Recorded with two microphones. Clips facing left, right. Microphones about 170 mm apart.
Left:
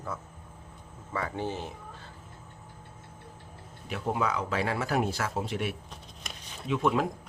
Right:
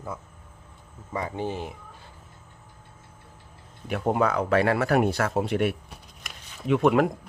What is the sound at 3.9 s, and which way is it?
Speech, 55° right (ahead or behind).